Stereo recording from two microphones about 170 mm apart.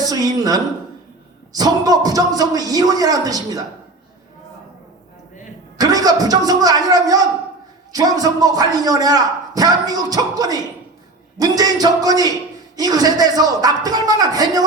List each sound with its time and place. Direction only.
0.0 s a man's voice: 20° right (ahead or behind)
5.7 s a man's voice: 20° right (ahead or behind)